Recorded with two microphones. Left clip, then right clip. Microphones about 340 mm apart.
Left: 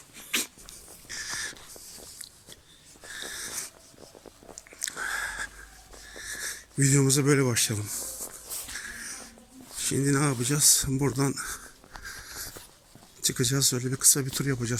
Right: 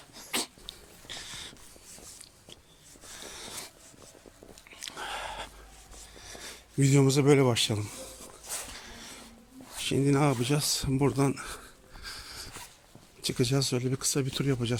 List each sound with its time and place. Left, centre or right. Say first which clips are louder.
0.3 s dog: left 3 dB; centre
1.0 s a sound: left 7 dB; centre
3.2 s wheeze: left 6 dB; centre
4.9 s a sound: left 5 dB; centre
6.2 s speech: left 9 dB; centre
8.5 s wheeze: right 3 dB; right
8.9 s wheeze: left 6 dB; centre
9.8 s speech: right 1 dB; centre
12.0 s a sound: left 1 dB; centre
13.2 s speech: left 2 dB; centre